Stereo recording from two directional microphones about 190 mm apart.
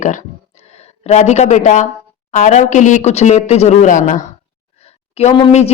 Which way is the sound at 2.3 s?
40° left (ahead or behind).